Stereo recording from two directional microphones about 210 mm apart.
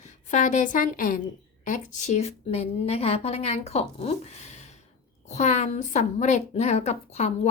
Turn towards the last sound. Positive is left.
turn(degrees=30)  # may be behind; listen again after turning